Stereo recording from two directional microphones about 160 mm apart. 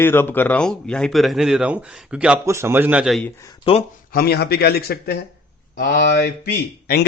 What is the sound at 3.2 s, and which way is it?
Speech, 20° left (ahead or behind).